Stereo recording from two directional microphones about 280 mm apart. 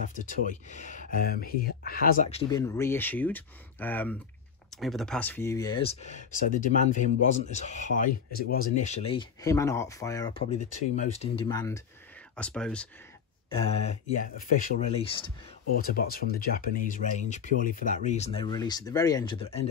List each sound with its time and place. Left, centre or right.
0.2 s speech: left
2.5 s speech: centre
13.7 s speech: left
15.8 s speech: left